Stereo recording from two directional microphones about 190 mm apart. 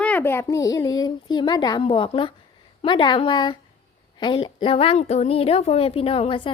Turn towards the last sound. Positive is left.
turn(degrees=30)  # may be behind; listen again after turning